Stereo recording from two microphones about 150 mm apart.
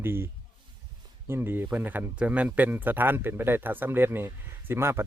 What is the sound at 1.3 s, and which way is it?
Speech, 15° right (ahead or behind).